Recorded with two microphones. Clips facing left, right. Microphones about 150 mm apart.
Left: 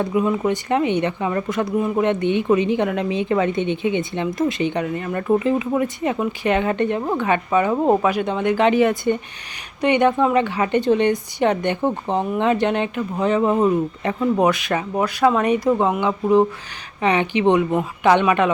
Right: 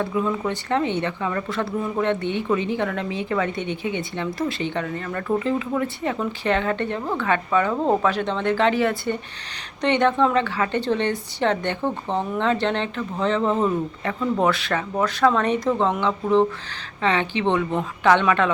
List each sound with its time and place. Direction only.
0.0 s speech: 15° left (ahead or behind)